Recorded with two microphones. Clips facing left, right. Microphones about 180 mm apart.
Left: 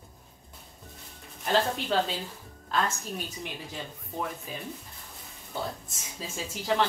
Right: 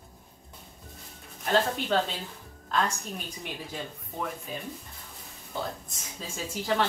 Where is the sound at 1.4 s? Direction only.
Centre (ahead or behind).